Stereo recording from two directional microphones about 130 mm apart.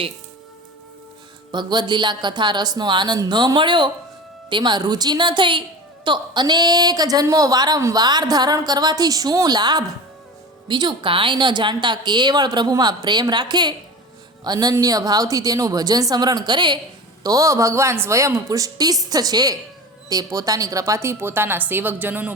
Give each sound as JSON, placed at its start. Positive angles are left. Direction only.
{"t": 1.5, "sound": "a woman's voice", "side_deg": -35}
{"t": 17.2, "sound": "a woman's voice", "side_deg": -25}